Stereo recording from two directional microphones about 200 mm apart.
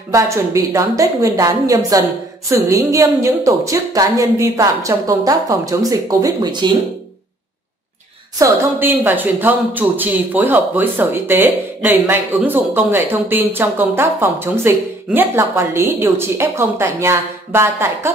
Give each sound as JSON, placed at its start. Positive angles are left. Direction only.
{"t": 0.1, "sound": "speech", "side_deg": -15}
{"t": 8.4, "sound": "speech", "side_deg": -15}